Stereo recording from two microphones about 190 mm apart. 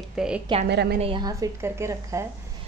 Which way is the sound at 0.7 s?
60° right (ahead or behind).